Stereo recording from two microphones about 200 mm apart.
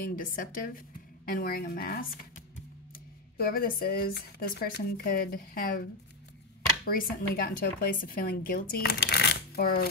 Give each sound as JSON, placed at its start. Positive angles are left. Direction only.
{"t": 0.0, "sound": "a woman's voice", "side_deg": 45}
{"t": 3.3, "sound": "a woman's voice", "side_deg": 50}
{"t": 6.9, "sound": "a woman's voice", "side_deg": 45}